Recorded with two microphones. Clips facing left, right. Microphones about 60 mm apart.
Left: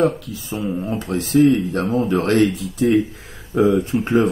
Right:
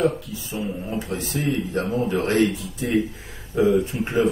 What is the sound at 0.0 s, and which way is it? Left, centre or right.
Speech, left.